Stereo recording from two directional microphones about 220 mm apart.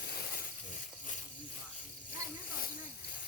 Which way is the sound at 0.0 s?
45° left (ahead or behind).